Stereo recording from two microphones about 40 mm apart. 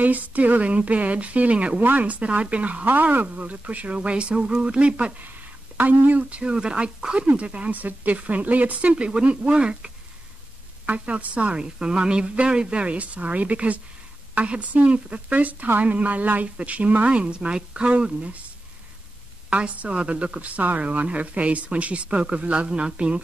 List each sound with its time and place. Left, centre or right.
0.0 s speech: right
1.8 s speech: right
2.9 s speech: right
5.8 s speech: right
6.4 s a woman's voice: right
7.7 s speech: right
8.9 s a woman's voice: right
19.5 s speech: right